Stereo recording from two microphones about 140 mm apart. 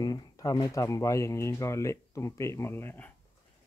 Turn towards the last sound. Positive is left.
turn(degrees=15)  # may be behind; listen again after turning